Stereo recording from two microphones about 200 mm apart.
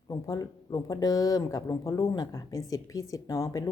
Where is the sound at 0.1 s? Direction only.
20° left (ahead or behind).